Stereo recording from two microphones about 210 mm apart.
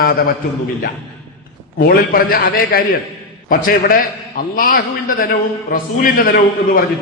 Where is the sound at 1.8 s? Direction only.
45° left (ahead or behind).